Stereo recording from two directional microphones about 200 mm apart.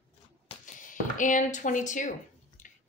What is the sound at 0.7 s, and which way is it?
Speech, 40° left (ahead or behind).